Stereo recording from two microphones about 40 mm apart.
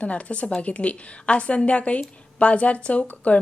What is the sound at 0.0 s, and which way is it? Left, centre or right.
A woman's voice, left.